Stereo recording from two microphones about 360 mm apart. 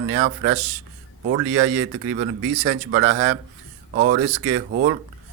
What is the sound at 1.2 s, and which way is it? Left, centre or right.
Speech, right.